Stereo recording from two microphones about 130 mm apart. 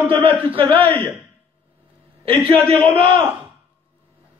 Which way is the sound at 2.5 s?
10° left (ahead or behind).